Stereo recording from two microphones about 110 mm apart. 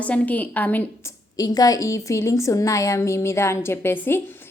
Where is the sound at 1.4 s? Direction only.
35° left (ahead or behind).